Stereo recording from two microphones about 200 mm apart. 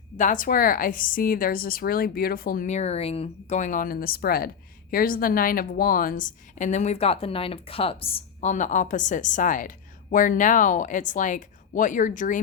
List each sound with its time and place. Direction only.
0.2 s a woman's voice: 40° left (ahead or behind)